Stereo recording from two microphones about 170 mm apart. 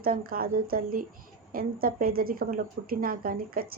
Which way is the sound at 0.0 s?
60° right (ahead or behind).